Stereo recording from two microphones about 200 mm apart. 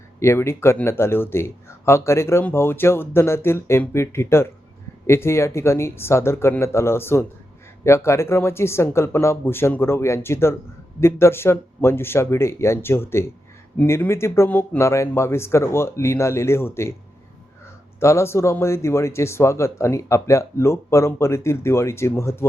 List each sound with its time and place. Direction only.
0.2 s speech: 15° left (ahead or behind)
18.0 s speech: 15° left (ahead or behind)